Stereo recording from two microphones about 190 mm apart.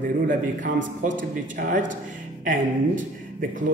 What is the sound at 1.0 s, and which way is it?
Speech, 45° right (ahead or behind).